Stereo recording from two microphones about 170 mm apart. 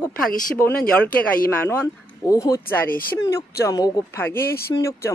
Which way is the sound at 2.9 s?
60° left (ahead or behind).